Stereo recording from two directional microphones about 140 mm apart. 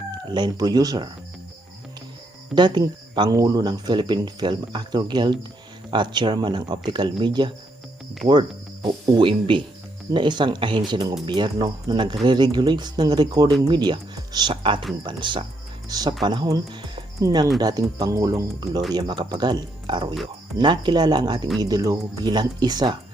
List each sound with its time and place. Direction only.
0.3 s speech: 30° right (ahead or behind)
2.6 s speech: 30° right (ahead or behind)